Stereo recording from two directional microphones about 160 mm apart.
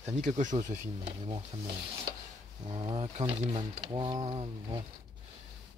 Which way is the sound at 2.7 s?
35° right (ahead or behind).